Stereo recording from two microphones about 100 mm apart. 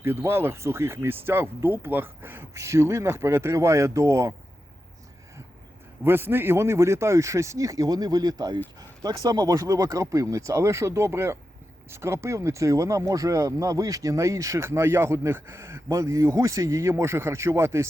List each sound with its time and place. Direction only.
0.0 s speech: 25° right (ahead or behind)
6.1 s speech: 20° right (ahead or behind)